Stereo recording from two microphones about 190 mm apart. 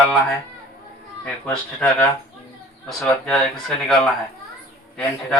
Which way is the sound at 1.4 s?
5° left (ahead or behind).